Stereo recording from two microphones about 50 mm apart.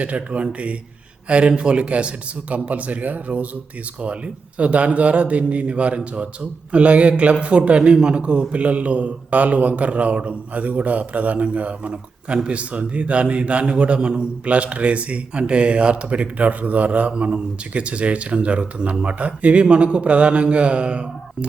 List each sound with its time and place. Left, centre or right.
0.0 s a man's voice: right
17.1 s a man's voice: centre